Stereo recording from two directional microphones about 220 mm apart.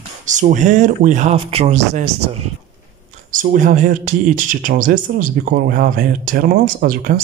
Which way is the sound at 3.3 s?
35° right (ahead or behind).